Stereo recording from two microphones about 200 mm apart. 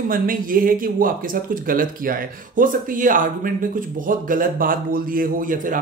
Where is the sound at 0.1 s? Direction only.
45° right (ahead or behind).